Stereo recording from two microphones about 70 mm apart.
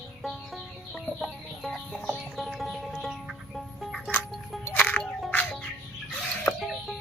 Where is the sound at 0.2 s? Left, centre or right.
Centre.